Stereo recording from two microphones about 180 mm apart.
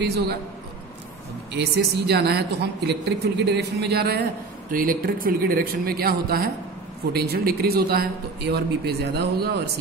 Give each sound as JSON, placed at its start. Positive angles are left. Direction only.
{"t": 1.5, "sound": "a woman's voice", "side_deg": -65}